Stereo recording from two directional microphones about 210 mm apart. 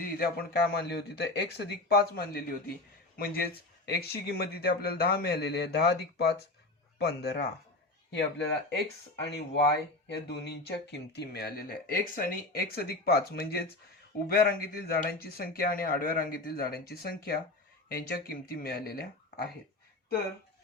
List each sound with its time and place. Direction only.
0.0 s speech: 45° left (ahead or behind)
9.2 s speech: 50° left (ahead or behind)